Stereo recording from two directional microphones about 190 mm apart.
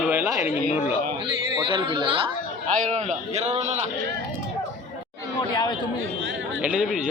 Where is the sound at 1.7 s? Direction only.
25° right (ahead or behind).